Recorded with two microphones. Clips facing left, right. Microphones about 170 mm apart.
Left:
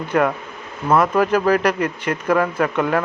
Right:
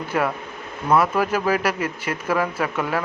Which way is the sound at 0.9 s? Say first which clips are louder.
Left 3 dB; 5° right (ahead or behind).